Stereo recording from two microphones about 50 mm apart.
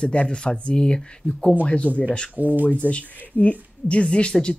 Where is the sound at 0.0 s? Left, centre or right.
Left.